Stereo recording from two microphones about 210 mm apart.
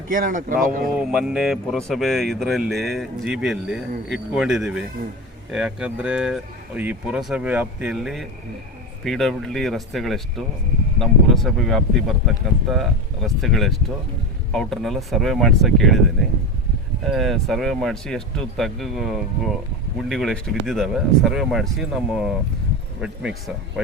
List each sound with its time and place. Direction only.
0.1 s speech: 40° right (ahead or behind)
0.9 s speech: 5° right (ahead or behind)
17.1 s speech: centre (ahead or behind)